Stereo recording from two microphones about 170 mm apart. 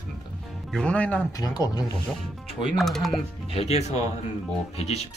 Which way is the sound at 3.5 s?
40° left (ahead or behind).